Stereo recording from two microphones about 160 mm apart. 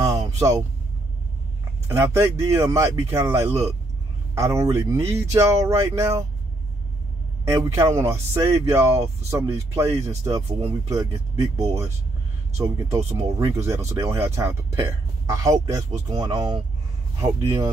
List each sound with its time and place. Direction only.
0.0 s a sound: 20° right (ahead or behind)
1.9 s speech: 15° right (ahead or behind)
7.4 s speech: 20° right (ahead or behind)